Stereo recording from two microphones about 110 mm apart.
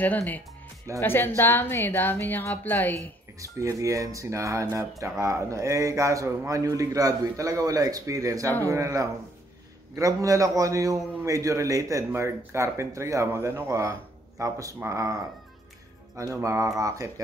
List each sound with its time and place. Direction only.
0.0 s a woman's voice: 15° left (ahead or behind)
3.3 s a man's voice: 30° right (ahead or behind)